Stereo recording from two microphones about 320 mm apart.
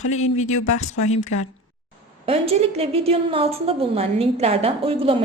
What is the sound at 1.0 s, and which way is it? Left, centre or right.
Speech, left.